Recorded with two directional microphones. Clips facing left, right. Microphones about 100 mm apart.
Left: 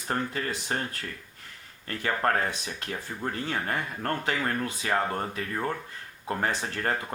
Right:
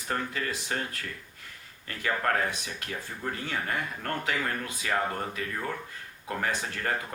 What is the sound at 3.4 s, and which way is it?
Speech, 35° left (ahead or behind).